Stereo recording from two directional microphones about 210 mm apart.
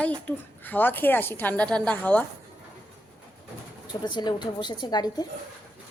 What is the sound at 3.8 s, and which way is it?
Speech, 20° left (ahead or behind).